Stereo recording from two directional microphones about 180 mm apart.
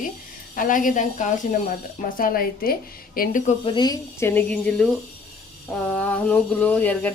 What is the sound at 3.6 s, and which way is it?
Speech, 25° left (ahead or behind).